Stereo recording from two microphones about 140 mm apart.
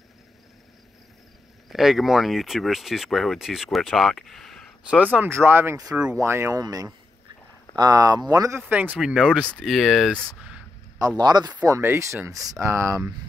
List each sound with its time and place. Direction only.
1.7 s speech: centre (ahead or behind)
4.8 s speech: 10° right (ahead or behind); by 8.5 s 25° right (ahead or behind)
8.5 s speech: 15° right (ahead or behind); by 10.3 s centre (ahead or behind)
11.1 s speech: 30° right (ahead or behind)
11.6 s speech: 20° right (ahead or behind)